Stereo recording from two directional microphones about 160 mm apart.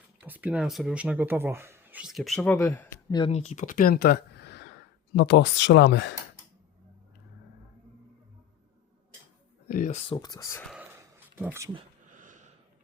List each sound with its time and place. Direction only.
0.3 s speech: 10° right (ahead or behind); by 3.0 s 15° left (ahead or behind)
3.1 s speech: 30° left (ahead or behind)
3.3 s speech: 45° left (ahead or behind); by 6.1 s 90° left
9.6 s speech: 55° left (ahead or behind)
10.1 s speech: 25° left (ahead or behind)
10.9 s a sound: 15° right (ahead or behind)
12.0 s a sound: 55° right (ahead or behind)